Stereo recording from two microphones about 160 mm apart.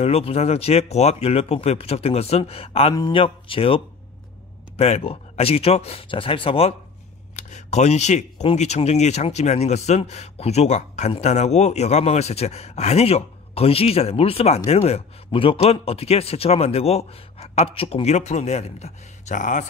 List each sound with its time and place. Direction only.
0.0 s speech: 40° left (ahead or behind)
7.3 s speech: 45° left (ahead or behind)